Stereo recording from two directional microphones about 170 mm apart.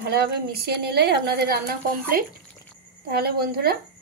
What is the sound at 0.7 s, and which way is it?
A woman's voice, 70° right (ahead or behind).